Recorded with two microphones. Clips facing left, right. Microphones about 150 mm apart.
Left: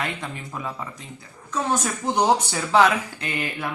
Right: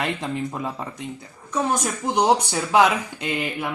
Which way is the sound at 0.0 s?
30° right (ahead or behind).